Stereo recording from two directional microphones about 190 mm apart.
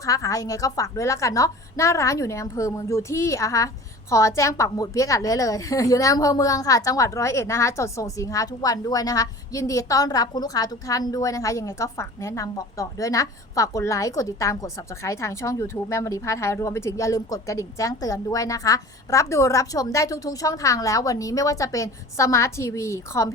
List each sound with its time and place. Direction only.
0.0 s a woman's voice: 15° left (ahead or behind)